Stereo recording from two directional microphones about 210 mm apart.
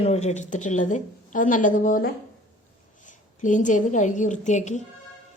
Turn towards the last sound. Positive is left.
turn(degrees=35)  # may be behind; listen again after turning